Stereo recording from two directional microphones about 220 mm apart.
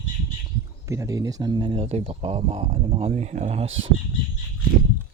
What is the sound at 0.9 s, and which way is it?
Speech, 15° right (ahead or behind).